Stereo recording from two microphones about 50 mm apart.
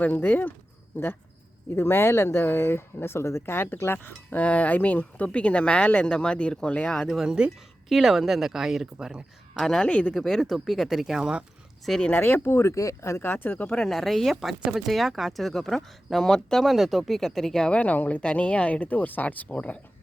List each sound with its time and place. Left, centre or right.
0.0 s speech: left
1.7 s speech: left
4.4 s speech: left
7.3 s speech: centre
9.6 s speech: centre
9.8 s speech: left
10.2 s speech: centre
11.1 s speech: centre
12.1 s speech: left
13.7 s speech: centre
16.6 s speech: centre
17.7 s speech: left